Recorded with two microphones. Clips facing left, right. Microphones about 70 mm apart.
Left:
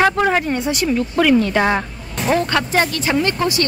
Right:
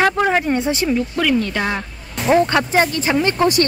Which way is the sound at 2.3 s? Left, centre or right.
Centre.